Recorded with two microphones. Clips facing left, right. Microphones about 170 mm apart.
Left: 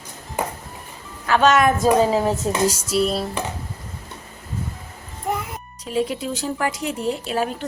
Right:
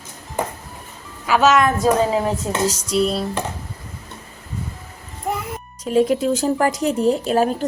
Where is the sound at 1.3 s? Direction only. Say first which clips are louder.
Right 1 dB; 5° right (ahead or behind).